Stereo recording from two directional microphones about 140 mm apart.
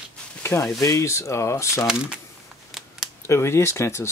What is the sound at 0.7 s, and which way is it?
Speech, 20° left (ahead or behind).